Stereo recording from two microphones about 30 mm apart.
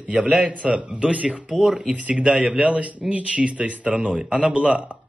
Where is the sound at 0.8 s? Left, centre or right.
Right.